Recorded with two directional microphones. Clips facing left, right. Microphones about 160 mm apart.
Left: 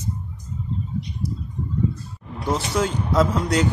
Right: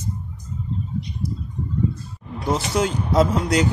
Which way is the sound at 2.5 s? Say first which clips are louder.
Right 1 dB; 15° right (ahead or behind).